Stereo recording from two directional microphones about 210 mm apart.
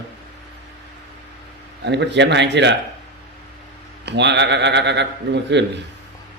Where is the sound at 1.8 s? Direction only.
55° right (ahead or behind).